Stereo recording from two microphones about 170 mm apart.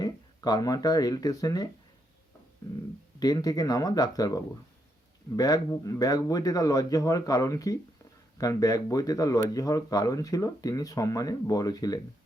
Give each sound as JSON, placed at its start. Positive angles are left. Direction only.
{"t": 0.0, "sound": "speech", "side_deg": 25}
{"t": 3.2, "sound": "speech", "side_deg": 20}